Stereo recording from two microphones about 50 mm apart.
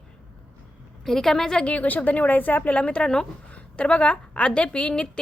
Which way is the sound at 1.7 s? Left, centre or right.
Left.